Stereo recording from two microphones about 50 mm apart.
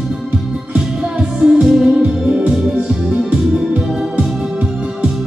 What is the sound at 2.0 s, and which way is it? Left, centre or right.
Music, right.